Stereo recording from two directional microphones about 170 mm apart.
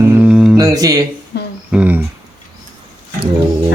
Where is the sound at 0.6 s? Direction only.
20° right (ahead or behind).